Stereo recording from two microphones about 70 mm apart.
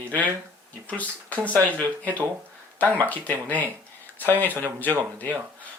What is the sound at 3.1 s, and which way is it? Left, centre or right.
Speech, left.